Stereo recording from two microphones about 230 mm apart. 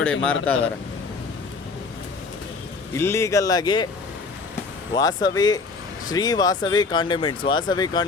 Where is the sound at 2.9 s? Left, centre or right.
Centre.